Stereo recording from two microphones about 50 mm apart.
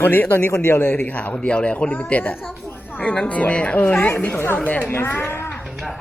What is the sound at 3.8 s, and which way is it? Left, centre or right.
A woman's voice, left.